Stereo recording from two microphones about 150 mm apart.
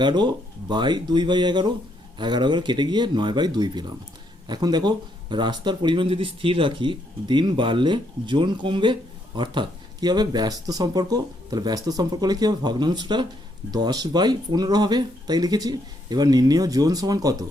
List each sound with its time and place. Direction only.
0.0 s speech: 30° right (ahead or behind)